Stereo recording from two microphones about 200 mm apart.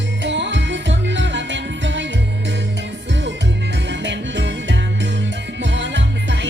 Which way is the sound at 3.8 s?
60° right (ahead or behind).